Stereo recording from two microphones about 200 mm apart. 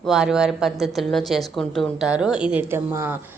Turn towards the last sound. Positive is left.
turn(degrees=-10)  # may be behind; listen again after turning